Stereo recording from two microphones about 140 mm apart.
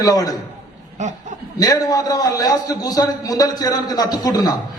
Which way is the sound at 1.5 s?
25° left (ahead or behind).